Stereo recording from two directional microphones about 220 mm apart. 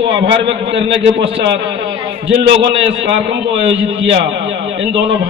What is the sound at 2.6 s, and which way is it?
A man's voice, 55° right (ahead or behind).